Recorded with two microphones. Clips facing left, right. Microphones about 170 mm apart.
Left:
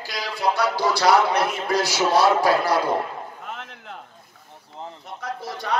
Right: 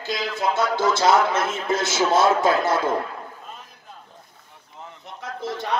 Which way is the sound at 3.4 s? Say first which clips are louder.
Left 6 dB; 80° left.